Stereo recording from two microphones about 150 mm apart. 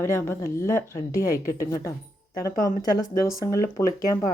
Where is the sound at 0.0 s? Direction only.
20° left (ahead or behind).